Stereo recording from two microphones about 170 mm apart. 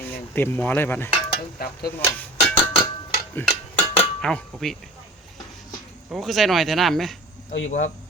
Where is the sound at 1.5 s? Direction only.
60° left (ahead or behind).